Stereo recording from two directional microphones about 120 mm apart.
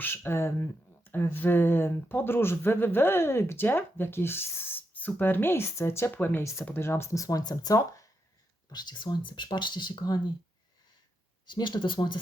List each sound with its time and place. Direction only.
0.0 s speech: 15° left (ahead or behind); by 10.2 s 35° left (ahead or behind)
11.4 s speech: 40° left (ahead or behind)